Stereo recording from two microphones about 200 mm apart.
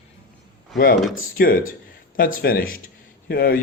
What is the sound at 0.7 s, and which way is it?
Speech, 45° left (ahead or behind).